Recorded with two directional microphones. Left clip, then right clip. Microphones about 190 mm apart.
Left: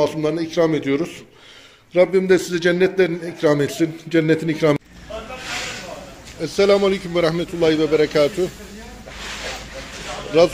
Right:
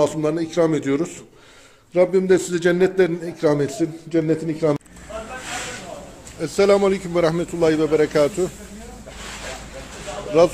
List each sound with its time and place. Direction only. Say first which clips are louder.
0.0 s a man's voice: even; 10° right (ahead or behind)
3.8 s a man's voice: left 3 dB; 20° left (ahead or behind)
6.4 s a man's voice: even; centre (ahead or behind)